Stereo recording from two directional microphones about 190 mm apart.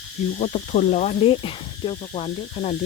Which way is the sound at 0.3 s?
35° left (ahead or behind).